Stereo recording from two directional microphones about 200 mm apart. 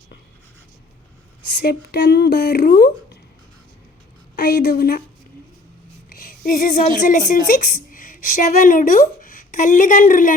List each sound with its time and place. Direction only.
1.6 s speech: 50° left (ahead or behind)
4.4 s speech: 50° left (ahead or behind)
6.1 s a woman's voice: 45° left (ahead or behind)